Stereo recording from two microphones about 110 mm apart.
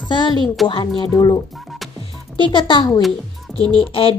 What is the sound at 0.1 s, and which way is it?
Music, 45° left (ahead or behind).